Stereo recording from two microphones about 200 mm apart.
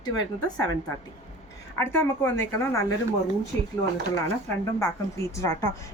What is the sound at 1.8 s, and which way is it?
Speech, 10° left (ahead or behind).